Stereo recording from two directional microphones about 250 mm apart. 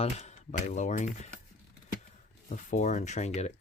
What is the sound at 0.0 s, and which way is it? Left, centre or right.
Speech, left.